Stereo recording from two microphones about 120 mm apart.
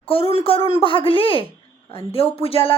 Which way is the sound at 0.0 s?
50° left (ahead or behind).